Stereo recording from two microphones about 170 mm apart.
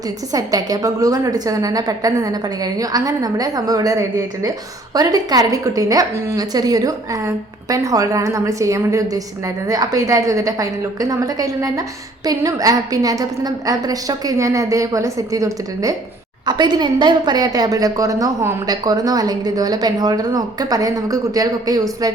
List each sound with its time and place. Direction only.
0.3 s a woman's voice: 20° right (ahead or behind)
4.9 s a woman's voice: 20° right (ahead or behind)